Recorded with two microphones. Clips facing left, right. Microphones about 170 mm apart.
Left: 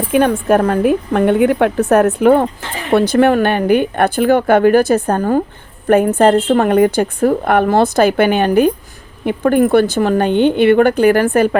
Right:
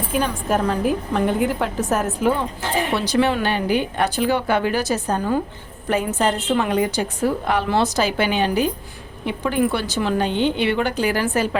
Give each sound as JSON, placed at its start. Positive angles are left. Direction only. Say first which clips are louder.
{"t": 0.1, "sound": "a woman's voice", "louder": "left 9 dB", "side_deg": 65}